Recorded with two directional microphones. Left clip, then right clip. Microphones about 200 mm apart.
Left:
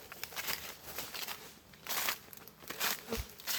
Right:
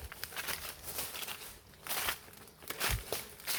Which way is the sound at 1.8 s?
20° left (ahead or behind).